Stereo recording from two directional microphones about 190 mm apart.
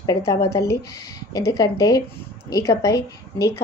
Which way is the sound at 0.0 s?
15° left (ahead or behind).